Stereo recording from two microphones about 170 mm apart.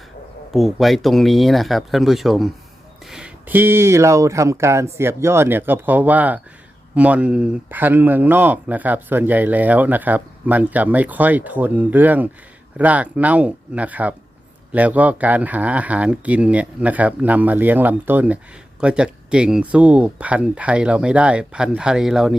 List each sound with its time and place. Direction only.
0.5 s speech: centre (ahead or behind)